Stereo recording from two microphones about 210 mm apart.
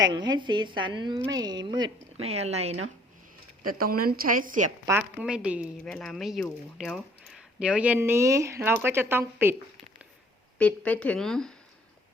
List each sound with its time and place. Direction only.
0.1 s a woman's voice: 20° right (ahead or behind)
3.8 s a woman's voice: 45° right (ahead or behind)
4.9 s speech: 5° right (ahead or behind)
10.6 s a woman's voice: 5° left (ahead or behind)